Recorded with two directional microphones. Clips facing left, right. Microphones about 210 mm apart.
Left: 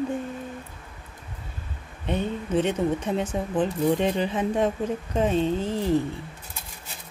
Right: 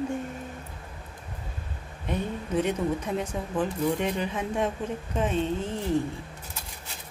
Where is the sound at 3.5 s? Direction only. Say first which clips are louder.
Left 3 dB; 30° left (ahead or behind).